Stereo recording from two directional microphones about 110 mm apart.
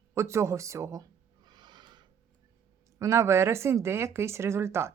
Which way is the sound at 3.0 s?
25° right (ahead or behind).